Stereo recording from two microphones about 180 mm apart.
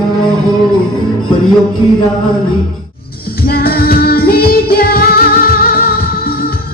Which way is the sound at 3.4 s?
55° left (ahead or behind).